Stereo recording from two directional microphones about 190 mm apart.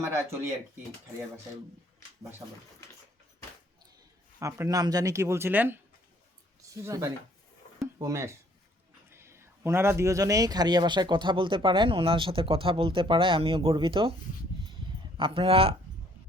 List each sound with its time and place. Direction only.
0.0 s speech: 15° right (ahead or behind)
4.4 s speech: 15° right (ahead or behind)
6.8 s speech: 15° right (ahead or behind)
15.2 s speech: 30° right (ahead or behind)